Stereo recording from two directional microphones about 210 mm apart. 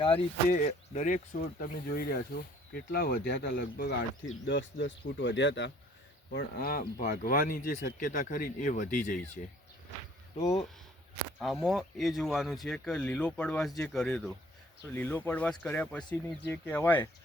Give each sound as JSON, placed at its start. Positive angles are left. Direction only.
{"t": 0.0, "sound": "speech", "side_deg": 30}
{"t": 6.3, "sound": "speech", "side_deg": 45}
{"t": 10.3, "sound": "speech", "side_deg": 15}
{"t": 11.6, "sound": "speech", "side_deg": 0}